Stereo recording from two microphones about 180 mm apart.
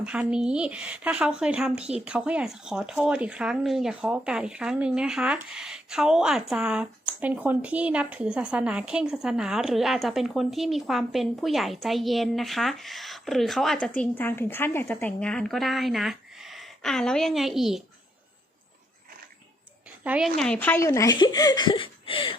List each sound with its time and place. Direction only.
0.0 s speech: 5° right (ahead or behind)
20.1 s speech: 5° right (ahead or behind); by 22.4 s 30° left (ahead or behind)